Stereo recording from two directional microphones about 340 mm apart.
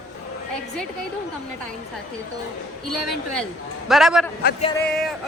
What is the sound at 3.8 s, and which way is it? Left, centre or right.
Speech, centre.